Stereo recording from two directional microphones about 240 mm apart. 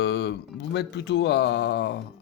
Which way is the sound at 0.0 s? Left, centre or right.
Left.